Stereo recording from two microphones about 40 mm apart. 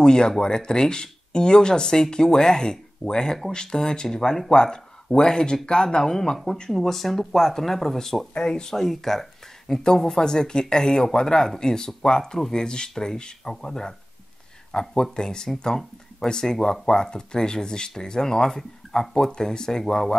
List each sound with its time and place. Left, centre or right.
0.0 s speech: centre
8.4 s speech: centre
8.7 s speech: centre
16.5 s speech: centre
16.8 s speech: centre